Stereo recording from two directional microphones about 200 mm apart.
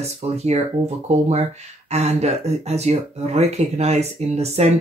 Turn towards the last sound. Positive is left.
turn(degrees=-30)  # may be behind; listen again after turning